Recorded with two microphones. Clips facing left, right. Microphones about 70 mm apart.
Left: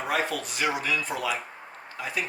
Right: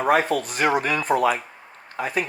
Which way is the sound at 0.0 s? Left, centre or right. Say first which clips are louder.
Right 8 dB; right.